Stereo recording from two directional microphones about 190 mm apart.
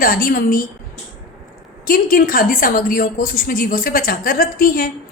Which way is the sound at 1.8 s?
45° left (ahead or behind).